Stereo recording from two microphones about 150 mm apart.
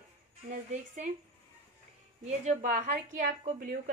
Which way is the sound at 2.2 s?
55° right (ahead or behind).